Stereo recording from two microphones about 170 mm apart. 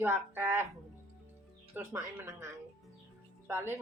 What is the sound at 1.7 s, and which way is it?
A woman's voice, 15° right (ahead or behind).